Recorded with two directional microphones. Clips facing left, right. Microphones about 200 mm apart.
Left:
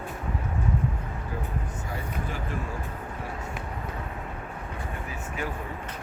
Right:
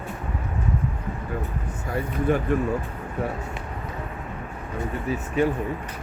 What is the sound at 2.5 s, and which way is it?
Speech, 60° right (ahead or behind).